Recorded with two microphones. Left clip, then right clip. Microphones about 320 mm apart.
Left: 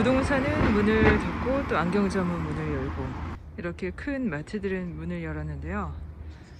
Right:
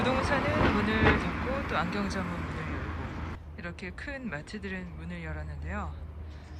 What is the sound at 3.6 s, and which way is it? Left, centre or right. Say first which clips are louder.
Speech: left 7 dB; centre.